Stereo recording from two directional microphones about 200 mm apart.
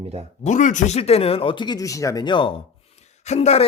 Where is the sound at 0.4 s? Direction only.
40° left (ahead or behind).